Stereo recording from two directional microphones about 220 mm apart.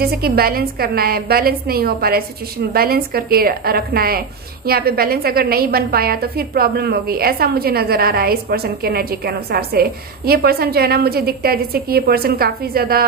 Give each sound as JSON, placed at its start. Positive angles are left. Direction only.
{"t": 0.0, "sound": "a woman's voice", "side_deg": -45}